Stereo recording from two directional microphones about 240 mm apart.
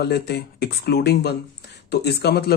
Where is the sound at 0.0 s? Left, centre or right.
Left.